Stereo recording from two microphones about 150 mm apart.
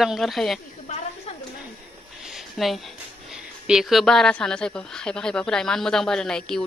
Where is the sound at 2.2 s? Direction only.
Centre (ahead or behind).